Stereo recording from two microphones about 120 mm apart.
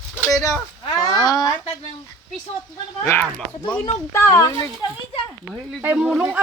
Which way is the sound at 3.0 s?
20° left (ahead or behind).